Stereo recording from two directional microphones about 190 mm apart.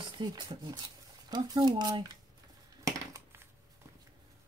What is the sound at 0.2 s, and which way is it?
Speech, 20° right (ahead or behind).